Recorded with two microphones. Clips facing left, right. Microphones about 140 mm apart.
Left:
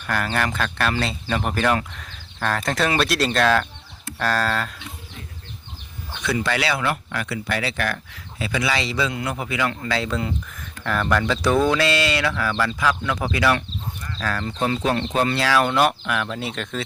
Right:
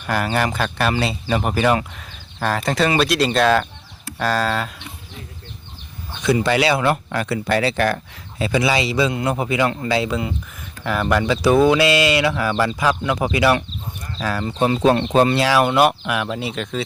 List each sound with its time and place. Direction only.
0.1 s speech: 10° right (ahead or behind)
6.2 s speech: 20° right (ahead or behind)
8.7 s speech: 15° right (ahead or behind)
9.1 s speech: 25° right (ahead or behind)
10.0 s speech: 10° right (ahead or behind)